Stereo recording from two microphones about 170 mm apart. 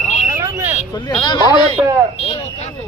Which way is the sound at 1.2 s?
25° left (ahead or behind).